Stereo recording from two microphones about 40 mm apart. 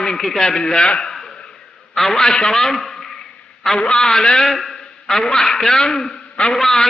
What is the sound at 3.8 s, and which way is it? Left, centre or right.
A man's voice, centre.